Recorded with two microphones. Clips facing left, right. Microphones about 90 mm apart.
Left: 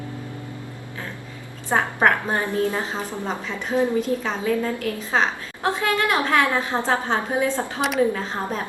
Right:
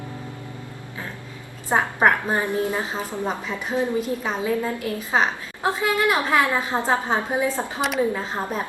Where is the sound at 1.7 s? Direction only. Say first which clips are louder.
Even; 10° right (ahead or behind).